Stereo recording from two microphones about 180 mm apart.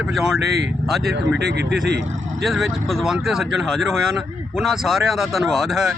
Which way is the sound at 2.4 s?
Centre (ahead or behind).